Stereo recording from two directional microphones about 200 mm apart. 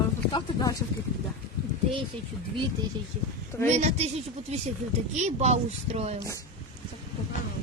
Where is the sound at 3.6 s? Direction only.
35° right (ahead or behind).